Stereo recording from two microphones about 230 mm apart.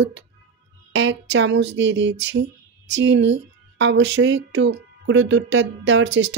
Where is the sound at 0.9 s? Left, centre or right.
Right.